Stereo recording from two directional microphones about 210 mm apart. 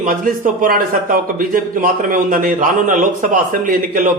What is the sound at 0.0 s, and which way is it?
A man's voice, 40° right (ahead or behind).